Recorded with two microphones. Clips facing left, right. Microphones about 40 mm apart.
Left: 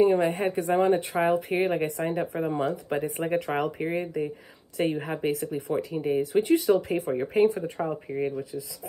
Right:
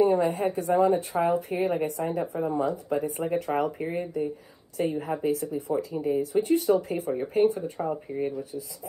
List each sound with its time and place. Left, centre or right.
0.0 s speech: left